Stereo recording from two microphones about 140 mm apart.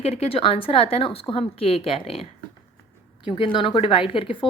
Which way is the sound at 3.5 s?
40° left (ahead or behind).